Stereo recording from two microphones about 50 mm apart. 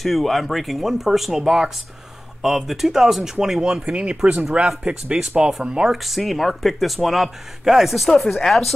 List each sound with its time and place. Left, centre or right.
0.0 s speech: centre
3.9 s speech: right
6.0 s speech: centre